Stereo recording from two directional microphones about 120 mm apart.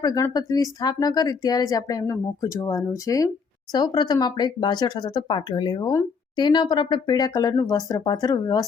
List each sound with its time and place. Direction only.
0.0 s speech: 35° left (ahead or behind)